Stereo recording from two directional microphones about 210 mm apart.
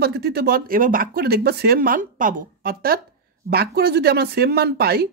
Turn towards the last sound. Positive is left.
turn(degrees=-50)  # may be behind; listen again after turning